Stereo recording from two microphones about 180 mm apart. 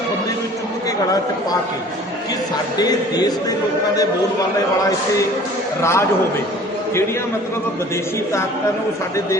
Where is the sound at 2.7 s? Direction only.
20° left (ahead or behind).